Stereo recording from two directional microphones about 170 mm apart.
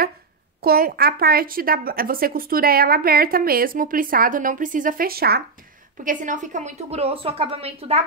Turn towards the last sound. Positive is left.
turn(degrees=-35)  # may be behind; listen again after turning